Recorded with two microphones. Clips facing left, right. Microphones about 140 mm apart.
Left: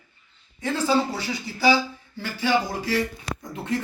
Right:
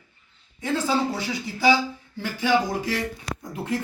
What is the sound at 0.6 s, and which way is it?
Speech, 20° right (ahead or behind).